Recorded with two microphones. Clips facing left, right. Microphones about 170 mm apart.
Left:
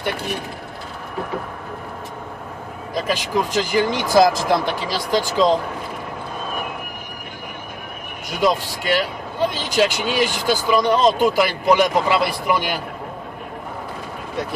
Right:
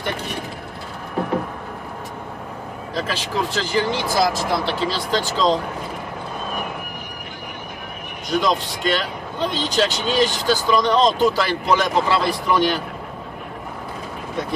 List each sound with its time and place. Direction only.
2.9 s speech: 15° left (ahead or behind)
8.3 s speech: 10° left (ahead or behind)